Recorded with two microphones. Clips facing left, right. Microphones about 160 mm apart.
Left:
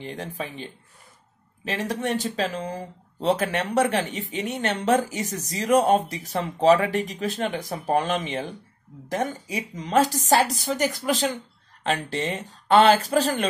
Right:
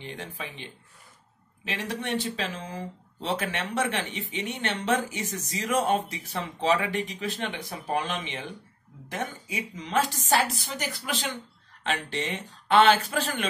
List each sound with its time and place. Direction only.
0.0 s speech: 40° left (ahead or behind)